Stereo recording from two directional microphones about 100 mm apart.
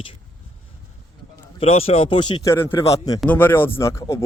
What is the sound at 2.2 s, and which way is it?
Speech, 50° left (ahead or behind).